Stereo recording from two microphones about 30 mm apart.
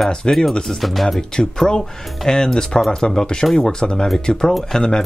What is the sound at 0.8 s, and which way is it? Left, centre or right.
Speech, centre.